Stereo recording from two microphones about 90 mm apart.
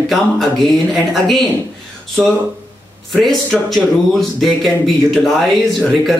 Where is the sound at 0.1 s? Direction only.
Centre (ahead or behind).